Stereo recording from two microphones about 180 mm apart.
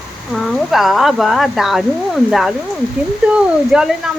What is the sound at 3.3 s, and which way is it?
Speech, 5° right (ahead or behind).